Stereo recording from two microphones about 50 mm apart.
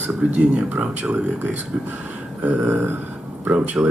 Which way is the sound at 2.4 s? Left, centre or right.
Right.